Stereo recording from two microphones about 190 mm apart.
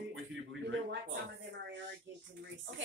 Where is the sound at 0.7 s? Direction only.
75° right (ahead or behind).